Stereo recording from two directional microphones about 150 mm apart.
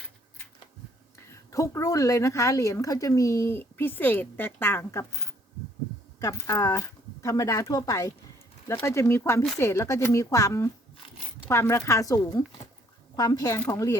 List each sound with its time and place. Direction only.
1.3 s a woman's voice: 20° left (ahead or behind)